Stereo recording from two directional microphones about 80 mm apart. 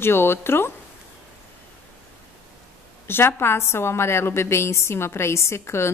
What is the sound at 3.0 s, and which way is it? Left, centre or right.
A woman's voice, left.